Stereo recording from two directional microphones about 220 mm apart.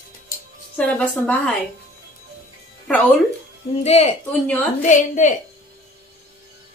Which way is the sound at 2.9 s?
10° left (ahead or behind).